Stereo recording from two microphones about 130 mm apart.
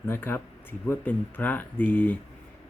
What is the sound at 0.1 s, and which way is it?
Speech, 15° left (ahead or behind).